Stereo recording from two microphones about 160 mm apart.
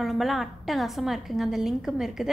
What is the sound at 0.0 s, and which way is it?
A woman's voice, centre (ahead or behind).